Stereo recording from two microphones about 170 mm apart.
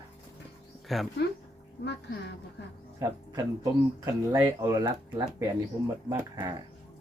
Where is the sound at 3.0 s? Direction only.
20° right (ahead or behind).